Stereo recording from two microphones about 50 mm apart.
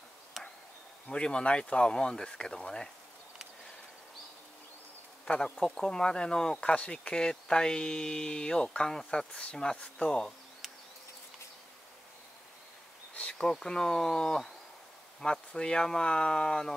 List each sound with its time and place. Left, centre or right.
1.0 s speech: centre
5.2 s speech: centre
13.3 s speech: centre